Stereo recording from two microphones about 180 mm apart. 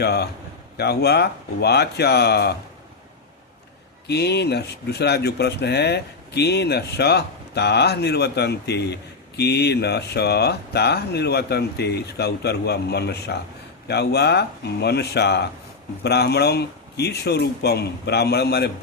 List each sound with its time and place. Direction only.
0.0 s speech: 65° left (ahead or behind)
4.0 s speech: 65° left (ahead or behind)